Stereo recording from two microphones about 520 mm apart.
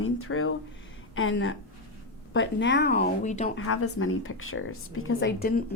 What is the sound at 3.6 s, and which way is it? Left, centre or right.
Speech, left.